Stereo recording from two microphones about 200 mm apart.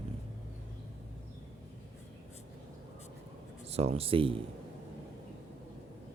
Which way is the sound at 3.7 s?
30° right (ahead or behind).